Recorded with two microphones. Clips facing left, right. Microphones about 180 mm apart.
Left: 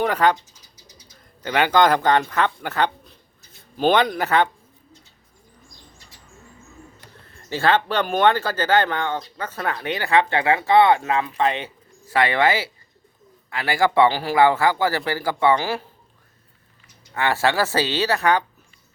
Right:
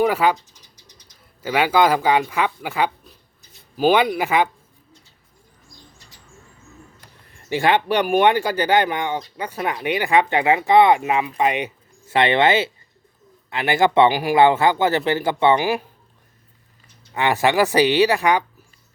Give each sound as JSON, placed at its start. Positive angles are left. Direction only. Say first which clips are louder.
{"t": 0.0, "sound": "speech", "louder": "right 1 dB", "side_deg": -5}
{"t": 0.8, "sound": "bird", "louder": "left 6 dB", "side_deg": 10}
{"t": 1.4, "sound": "speech", "louder": "even", "side_deg": -5}
{"t": 7.3, "sound": "a man's voice", "louder": "right 1 dB", "side_deg": -15}
{"t": 17.2, "sound": "speech", "louder": "right 3 dB", "side_deg": -15}